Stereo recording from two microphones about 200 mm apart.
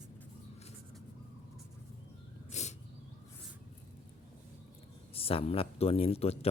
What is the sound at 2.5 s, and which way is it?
Cat, 35° left (ahead or behind).